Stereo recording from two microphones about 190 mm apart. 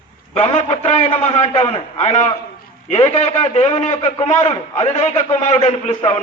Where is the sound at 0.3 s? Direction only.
35° left (ahead or behind).